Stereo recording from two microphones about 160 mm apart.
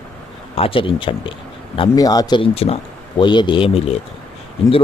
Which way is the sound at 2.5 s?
40° left (ahead or behind).